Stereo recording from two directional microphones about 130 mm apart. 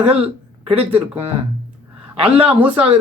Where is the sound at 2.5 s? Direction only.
10° right (ahead or behind).